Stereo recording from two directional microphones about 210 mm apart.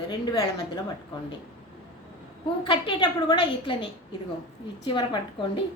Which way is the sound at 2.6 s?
25° left (ahead or behind).